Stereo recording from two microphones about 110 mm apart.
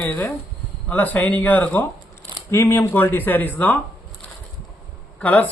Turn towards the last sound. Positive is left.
turn(degrees=15)  # may be behind; listen again after turning